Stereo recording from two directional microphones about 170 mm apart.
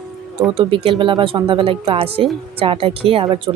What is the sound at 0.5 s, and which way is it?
Speech, 30° right (ahead or behind).